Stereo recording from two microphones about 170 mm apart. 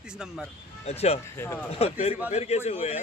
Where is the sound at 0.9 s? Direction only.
40° left (ahead or behind).